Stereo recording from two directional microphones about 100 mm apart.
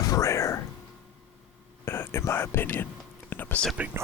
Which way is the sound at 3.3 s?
20° left (ahead or behind).